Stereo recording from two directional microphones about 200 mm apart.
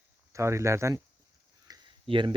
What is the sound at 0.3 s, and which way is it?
Speech, 15° right (ahead or behind).